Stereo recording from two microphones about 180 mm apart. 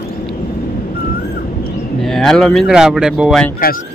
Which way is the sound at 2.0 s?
Centre (ahead or behind).